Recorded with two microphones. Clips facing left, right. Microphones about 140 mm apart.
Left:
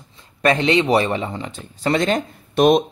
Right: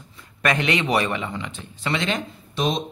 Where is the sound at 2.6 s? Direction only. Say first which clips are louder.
Left 10 dB; 55° left (ahead or behind).